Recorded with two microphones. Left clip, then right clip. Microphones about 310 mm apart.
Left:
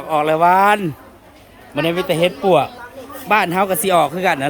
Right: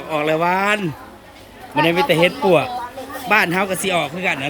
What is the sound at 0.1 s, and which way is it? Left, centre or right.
A man's voice, centre.